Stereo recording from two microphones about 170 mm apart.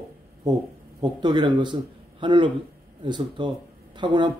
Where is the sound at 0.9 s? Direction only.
25° right (ahead or behind).